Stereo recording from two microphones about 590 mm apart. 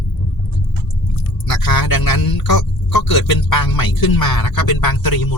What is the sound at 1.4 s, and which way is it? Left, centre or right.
Speech, left.